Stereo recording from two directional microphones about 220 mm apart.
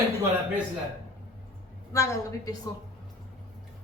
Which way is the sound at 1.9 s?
15° left (ahead or behind).